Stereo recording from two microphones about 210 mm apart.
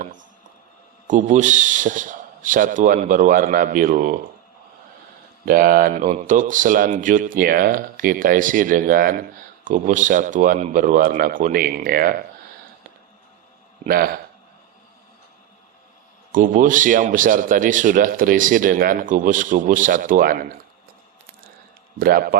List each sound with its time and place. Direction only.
0.0 s a sound: 40° right (ahead or behind)
1.0 s speech: 35° right (ahead or behind)
5.5 s speech: 40° right (ahead or behind)
13.8 s a man's voice: 45° right (ahead or behind)
16.3 s speech: 40° right (ahead or behind)
21.9 s a man's voice: 45° right (ahead or behind)